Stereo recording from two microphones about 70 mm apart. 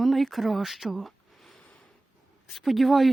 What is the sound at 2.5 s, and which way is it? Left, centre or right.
Speech, centre.